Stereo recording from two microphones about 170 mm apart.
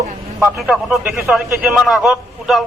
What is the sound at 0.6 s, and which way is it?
A man's voice, centre (ahead or behind).